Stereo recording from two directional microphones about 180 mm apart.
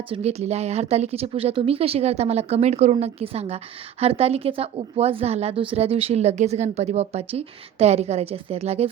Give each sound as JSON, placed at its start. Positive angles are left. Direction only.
{"t": 0.1, "sound": "a woman's voice", "side_deg": -35}